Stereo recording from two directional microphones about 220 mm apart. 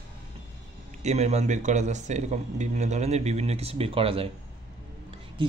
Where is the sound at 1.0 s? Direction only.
30° right (ahead or behind).